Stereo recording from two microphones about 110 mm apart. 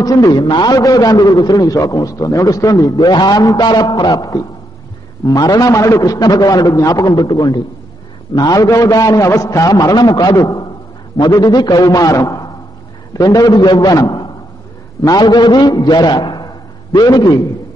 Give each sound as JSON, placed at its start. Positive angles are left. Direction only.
{"t": 0.0, "sound": "a man's voice", "side_deg": 35}